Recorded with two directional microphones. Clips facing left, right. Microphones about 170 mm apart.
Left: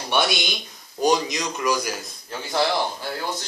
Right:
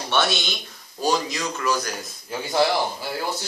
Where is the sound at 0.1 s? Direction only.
15° left (ahead or behind).